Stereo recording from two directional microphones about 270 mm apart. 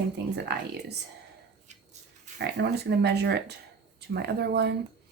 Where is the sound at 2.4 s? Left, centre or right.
Right.